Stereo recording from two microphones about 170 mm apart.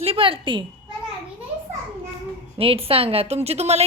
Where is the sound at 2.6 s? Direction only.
35° right (ahead or behind).